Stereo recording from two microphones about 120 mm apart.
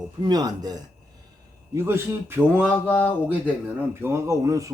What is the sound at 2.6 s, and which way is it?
Mantra, 15° left (ahead or behind).